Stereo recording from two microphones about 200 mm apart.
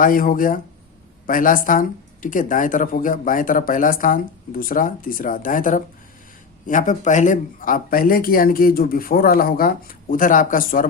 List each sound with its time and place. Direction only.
0.0 s speech: 45° left (ahead or behind)